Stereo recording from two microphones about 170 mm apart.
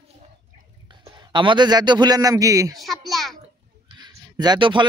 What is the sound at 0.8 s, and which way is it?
A man's voice, 25° right (ahead or behind).